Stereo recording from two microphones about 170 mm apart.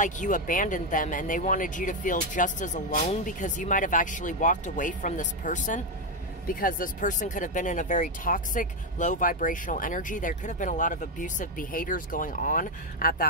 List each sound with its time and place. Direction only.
0.0 s speech: 50° left (ahead or behind)